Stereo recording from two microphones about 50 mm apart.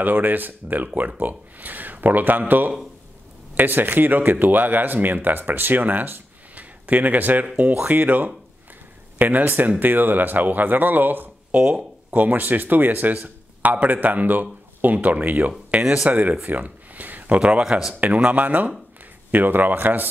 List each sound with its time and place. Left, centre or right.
0.0 s speech: right
11.5 s speech: right
15.8 s speech: centre
16.1 s speech: right
16.4 s a sound: right
17.4 s a man's voice: right